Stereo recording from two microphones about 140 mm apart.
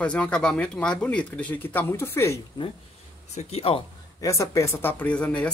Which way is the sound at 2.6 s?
35° left (ahead or behind).